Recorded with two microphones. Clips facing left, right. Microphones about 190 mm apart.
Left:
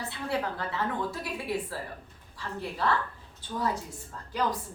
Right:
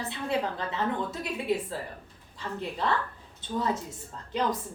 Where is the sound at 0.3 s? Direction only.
20° right (ahead or behind).